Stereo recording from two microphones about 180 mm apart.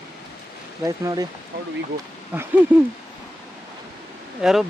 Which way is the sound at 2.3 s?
10° right (ahead or behind).